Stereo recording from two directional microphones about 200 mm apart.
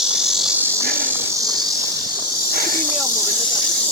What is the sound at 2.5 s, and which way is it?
Snake, 45° right (ahead or behind).